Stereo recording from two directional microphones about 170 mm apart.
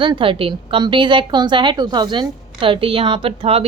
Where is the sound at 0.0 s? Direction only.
30° right (ahead or behind).